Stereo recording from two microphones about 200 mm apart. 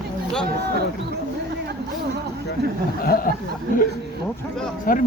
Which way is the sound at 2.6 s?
55° right (ahead or behind).